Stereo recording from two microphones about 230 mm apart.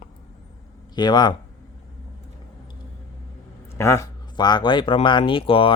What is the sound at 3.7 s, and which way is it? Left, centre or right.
Speech, centre.